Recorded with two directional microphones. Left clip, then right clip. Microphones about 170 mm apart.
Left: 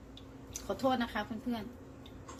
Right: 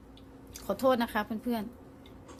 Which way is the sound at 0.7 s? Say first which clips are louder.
Right 5 dB; 65° right (ahead or behind).